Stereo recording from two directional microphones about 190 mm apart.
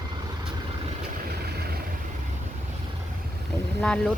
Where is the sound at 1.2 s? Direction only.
55° right (ahead or behind).